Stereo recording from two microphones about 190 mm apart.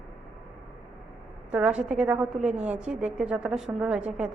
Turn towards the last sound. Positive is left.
turn(degrees=-5)  # may be behind; listen again after turning